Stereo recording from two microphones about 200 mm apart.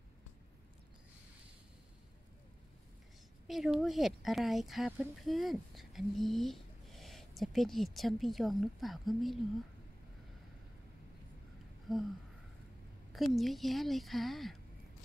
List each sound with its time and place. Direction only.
3.4 s speech: centre (ahead or behind)
11.9 s a sound: centre (ahead or behind)
13.1 s speech: centre (ahead or behind)